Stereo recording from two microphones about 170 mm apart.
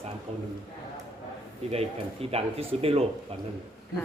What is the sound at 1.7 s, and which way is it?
Speech, 35° right (ahead or behind).